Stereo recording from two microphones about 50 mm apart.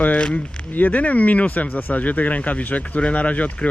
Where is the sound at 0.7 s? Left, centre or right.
Left.